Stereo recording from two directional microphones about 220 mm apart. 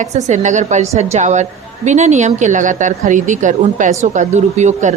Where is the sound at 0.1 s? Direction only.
35° right (ahead or behind).